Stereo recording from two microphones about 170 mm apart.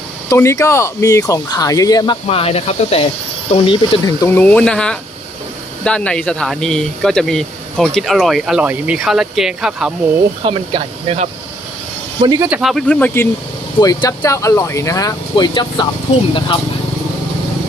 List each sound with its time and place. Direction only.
0.3 s speech: 15° left (ahead or behind)
2.2 s speech: 35° left (ahead or behind)
4.2 s speech: 10° left (ahead or behind); by 9.9 s 5° right (ahead or behind)
10.4 s speech: 30° right (ahead or behind)
12.2 s speech: 20° right (ahead or behind)
12.5 s speech: 5° right (ahead or behind)
12.9 s speech: 10° left (ahead or behind)
13.7 s speech: 25° left (ahead or behind)